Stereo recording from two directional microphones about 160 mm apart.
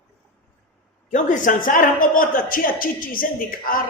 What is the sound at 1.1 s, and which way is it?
A woman's voice, 55° left (ahead or behind).